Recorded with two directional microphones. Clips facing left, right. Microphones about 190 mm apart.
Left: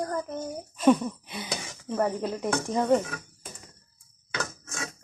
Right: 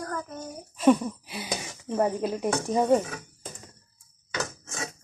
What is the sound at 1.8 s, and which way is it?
Speech, 15° right (ahead or behind).